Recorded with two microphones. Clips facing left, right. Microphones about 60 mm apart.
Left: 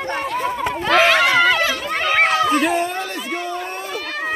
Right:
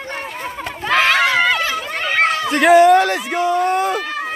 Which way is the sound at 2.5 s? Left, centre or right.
Right.